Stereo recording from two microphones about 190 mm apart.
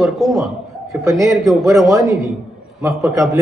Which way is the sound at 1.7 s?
15° right (ahead or behind).